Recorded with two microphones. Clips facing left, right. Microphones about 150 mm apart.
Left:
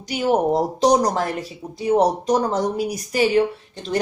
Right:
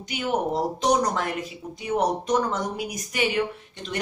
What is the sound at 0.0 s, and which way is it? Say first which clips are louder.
Speech: left 7 dB; 35° left (ahead or behind).